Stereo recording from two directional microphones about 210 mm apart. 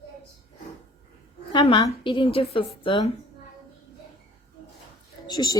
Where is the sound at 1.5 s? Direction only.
25° left (ahead or behind).